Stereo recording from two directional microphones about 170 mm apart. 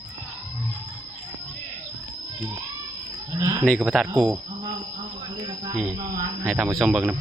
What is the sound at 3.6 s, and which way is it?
Speech, centre (ahead or behind).